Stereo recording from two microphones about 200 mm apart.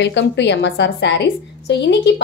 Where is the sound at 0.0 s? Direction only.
60° left (ahead or behind).